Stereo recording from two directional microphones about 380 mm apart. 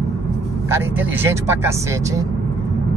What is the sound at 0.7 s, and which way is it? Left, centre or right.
Speech, centre.